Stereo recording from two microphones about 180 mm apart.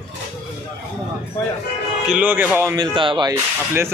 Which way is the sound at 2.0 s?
5° right (ahead or behind).